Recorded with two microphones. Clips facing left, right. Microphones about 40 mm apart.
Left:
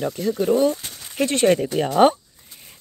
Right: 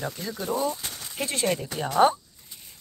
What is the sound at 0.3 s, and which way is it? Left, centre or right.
Speech, left.